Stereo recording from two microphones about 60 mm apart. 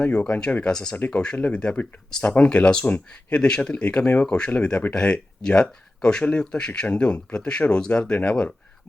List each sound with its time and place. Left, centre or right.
0.0 s speech: left
0.9 s speech: left